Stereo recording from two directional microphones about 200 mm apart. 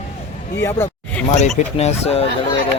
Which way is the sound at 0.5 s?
10° left (ahead or behind).